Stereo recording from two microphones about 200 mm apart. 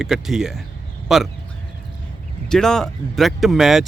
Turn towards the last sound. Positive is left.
turn(degrees=0)  # may be behind; listen again after turning